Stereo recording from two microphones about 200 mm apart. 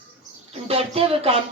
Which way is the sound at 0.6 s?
30° right (ahead or behind).